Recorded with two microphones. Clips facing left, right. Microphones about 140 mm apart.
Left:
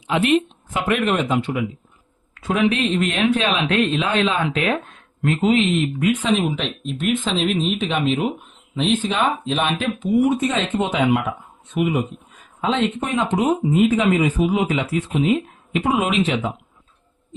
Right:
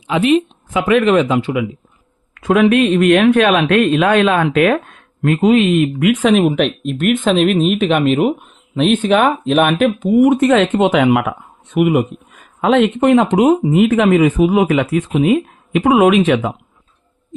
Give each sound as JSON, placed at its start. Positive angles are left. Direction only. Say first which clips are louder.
{"t": 0.9, "sound": "speech", "louder": "right 9 dB", "side_deg": -90}
{"t": 2.3, "sound": "speech", "louder": "right 8 dB", "side_deg": -75}
{"t": 5.2, "sound": "speech", "louder": "right 6 dB", "side_deg": -70}
{"t": 6.4, "sound": "speech", "louder": "right 9 dB", "side_deg": -60}